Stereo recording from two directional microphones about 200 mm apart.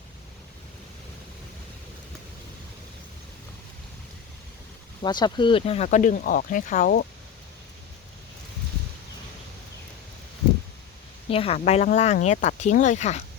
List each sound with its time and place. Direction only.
5.0 s speech: 20° left (ahead or behind); by 7.1 s 45° left (ahead or behind)
11.3 s speech: 30° left (ahead or behind)